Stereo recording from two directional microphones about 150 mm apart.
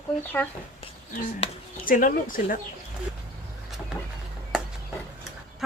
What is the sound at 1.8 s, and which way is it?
Speech, 65° left (ahead or behind).